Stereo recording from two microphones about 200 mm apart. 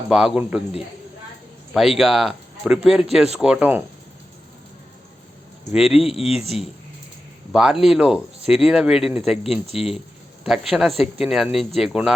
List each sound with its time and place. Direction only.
0.1 s speech: 5° right (ahead or behind)
1.7 s speech: centre (ahead or behind)
5.7 s speech: centre (ahead or behind)
6.1 s speech: 30° left (ahead or behind)
7.5 s speech: 5° right (ahead or behind)
9.7 s speech: 30° left (ahead or behind)
10.4 s speech: centre (ahead or behind)